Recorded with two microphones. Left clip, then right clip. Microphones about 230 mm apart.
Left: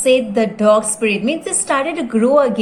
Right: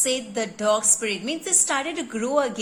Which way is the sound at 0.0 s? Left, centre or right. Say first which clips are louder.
Left 12 dB; centre.